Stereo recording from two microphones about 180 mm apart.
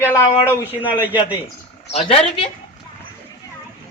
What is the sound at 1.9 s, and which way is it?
Speech, 35° left (ahead or behind).